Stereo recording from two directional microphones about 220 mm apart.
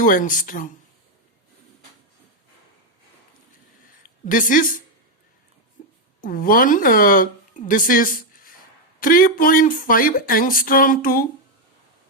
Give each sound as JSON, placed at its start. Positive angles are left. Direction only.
{"t": 0.0, "sound": "speech", "side_deg": 40}
{"t": 4.0, "sound": "speech", "side_deg": 35}
{"t": 5.8, "sound": "a sound", "side_deg": 35}
{"t": 6.2, "sound": "speech", "side_deg": 40}